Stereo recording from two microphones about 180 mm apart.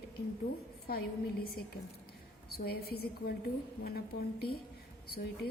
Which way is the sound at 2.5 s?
60° left (ahead or behind).